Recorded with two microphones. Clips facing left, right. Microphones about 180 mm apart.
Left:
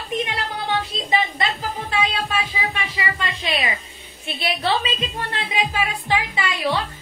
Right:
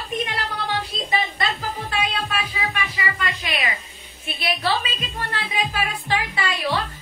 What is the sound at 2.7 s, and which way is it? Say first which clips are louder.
A woman's voice: left 1 dB; 25° left (ahead or behind).